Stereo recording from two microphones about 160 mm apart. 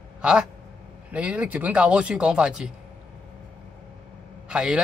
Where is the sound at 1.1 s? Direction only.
10° right (ahead or behind).